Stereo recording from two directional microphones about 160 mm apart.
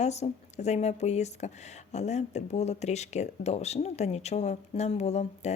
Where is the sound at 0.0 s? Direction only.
45° left (ahead or behind).